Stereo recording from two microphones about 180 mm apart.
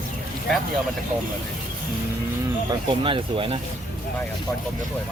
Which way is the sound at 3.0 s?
30° right (ahead or behind).